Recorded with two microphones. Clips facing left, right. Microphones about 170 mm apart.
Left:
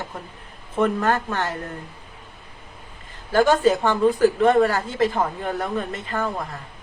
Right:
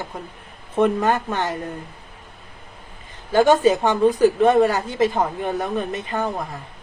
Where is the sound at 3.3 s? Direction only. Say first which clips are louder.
Right 2 dB; 20° right (ahead or behind).